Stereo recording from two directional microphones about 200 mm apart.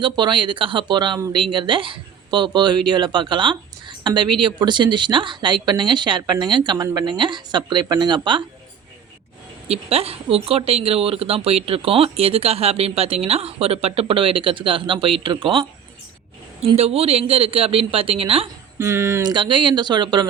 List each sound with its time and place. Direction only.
0.0 s speech: 25° right (ahead or behind)
9.6 s speech: 30° right (ahead or behind)
18.8 s speech: 15° right (ahead or behind)